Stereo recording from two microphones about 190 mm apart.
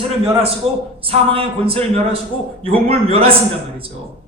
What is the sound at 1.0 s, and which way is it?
Speech, 30° right (ahead or behind).